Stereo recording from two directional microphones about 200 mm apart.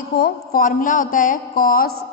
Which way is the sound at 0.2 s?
45° left (ahead or behind).